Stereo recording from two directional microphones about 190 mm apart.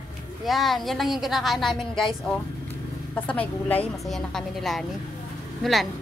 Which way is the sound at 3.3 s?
10° left (ahead or behind).